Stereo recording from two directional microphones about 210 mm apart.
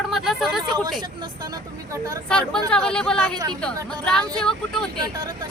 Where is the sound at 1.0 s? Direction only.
20° right (ahead or behind).